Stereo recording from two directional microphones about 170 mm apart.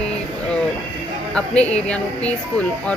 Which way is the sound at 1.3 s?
5° left (ahead or behind).